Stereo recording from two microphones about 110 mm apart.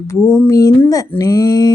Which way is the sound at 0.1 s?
20° left (ahead or behind).